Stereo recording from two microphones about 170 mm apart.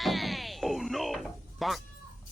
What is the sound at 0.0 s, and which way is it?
Music, centre (ahead or behind).